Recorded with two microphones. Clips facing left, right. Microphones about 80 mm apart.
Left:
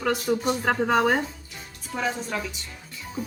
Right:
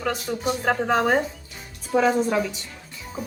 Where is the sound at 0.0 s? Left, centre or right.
Centre.